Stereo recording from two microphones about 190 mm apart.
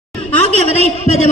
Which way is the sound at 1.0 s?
35° left (ahead or behind).